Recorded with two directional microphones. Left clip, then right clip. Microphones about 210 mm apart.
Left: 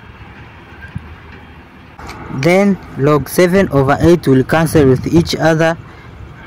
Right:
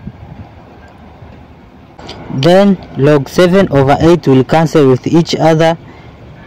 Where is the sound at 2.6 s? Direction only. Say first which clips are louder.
Right 4 dB; 15° right (ahead or behind).